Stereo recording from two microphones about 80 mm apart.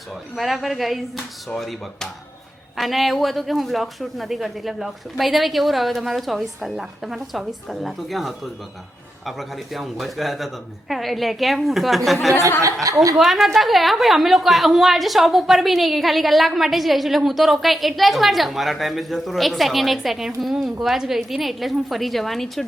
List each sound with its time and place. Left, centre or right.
0.3 s a woman's voice: centre
12.8 s a woman's voice: right
13.1 s a woman's voice: centre